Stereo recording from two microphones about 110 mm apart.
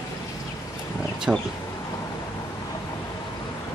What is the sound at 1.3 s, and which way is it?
Speech, 10° right (ahead or behind).